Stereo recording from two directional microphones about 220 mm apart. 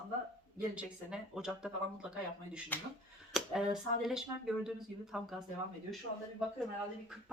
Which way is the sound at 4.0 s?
Centre (ahead or behind).